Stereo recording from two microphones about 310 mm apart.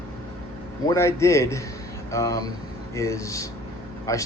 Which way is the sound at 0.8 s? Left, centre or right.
Centre.